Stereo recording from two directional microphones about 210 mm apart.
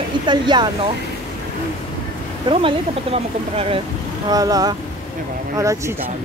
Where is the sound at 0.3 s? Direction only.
20° right (ahead or behind).